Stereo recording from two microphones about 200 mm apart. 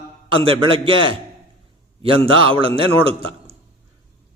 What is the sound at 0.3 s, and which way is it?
A man's voice, 25° right (ahead or behind).